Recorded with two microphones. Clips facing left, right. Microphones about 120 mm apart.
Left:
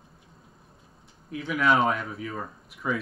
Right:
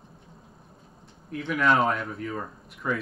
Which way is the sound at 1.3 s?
Centre (ahead or behind).